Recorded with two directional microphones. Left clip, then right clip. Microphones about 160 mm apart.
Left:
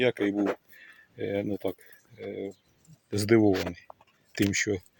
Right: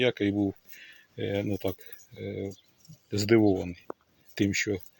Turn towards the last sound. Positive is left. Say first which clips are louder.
# left 1 dB
turn(degrees=15)  # may be behind; listen again after turning